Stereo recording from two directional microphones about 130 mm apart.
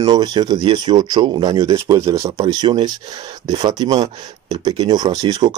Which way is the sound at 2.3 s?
35° right (ahead or behind).